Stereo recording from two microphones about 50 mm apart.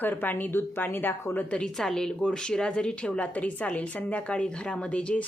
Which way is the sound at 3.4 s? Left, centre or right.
Left.